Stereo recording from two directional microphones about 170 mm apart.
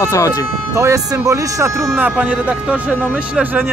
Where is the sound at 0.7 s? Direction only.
20° right (ahead or behind).